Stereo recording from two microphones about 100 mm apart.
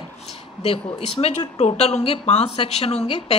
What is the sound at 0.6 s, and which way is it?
A woman's voice, 80° left.